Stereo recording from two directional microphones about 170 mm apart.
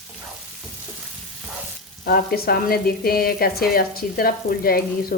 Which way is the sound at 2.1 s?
60° left (ahead or behind).